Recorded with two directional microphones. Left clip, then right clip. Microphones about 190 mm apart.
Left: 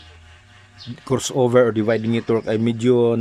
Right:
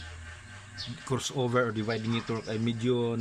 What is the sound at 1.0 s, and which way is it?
Speech, 35° left (ahead or behind).